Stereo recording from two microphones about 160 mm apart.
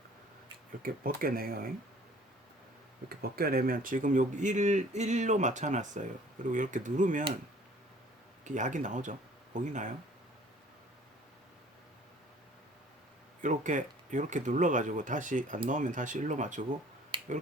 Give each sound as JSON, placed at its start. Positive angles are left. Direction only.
{"t": 0.8, "sound": "speech", "side_deg": -65}
{"t": 3.1, "sound": "speech", "side_deg": -70}
{"t": 8.4, "sound": "speech", "side_deg": -50}
{"t": 13.4, "sound": "speech", "side_deg": -50}
{"t": 17.1, "sound": "finger snapping", "side_deg": -30}